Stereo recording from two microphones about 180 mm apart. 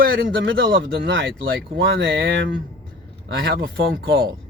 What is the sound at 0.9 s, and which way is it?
Speech, 75° right (ahead or behind).